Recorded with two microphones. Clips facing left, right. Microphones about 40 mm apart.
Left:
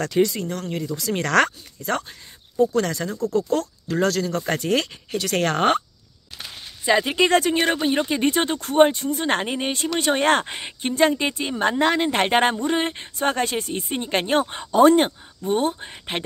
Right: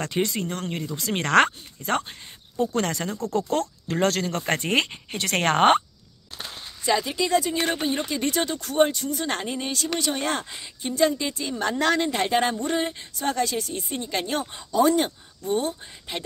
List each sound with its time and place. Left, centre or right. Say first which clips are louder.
0.0 s speech: left 5 dB; right
7.2 s speech: left 5 dB; left
11.7 s speech: left 1 dB; left
12.1 s speech: left 4 dB; left
12.5 s speech: left 3 dB; left